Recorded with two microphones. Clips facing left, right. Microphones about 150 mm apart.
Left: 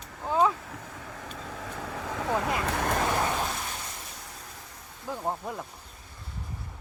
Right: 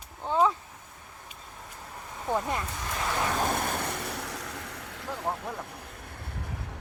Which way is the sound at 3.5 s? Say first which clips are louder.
Right 7 dB; 55° right (ahead or behind).